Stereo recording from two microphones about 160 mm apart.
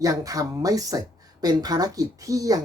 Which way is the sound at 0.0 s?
20° right (ahead or behind).